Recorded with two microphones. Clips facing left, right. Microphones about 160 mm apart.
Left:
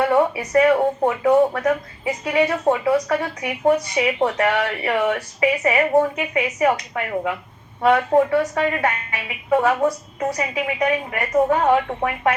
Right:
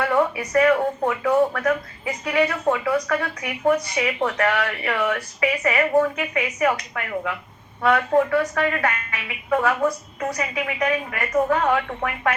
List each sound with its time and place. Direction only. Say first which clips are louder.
0.0 s speech: left 3 dB; 30° left (ahead or behind)